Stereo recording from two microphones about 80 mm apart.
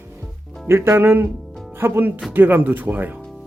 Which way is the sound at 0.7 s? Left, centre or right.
Right.